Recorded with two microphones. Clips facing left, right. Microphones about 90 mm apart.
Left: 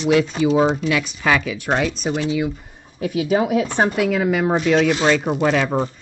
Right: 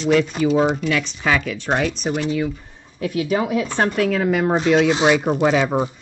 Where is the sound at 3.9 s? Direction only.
5° left (ahead or behind).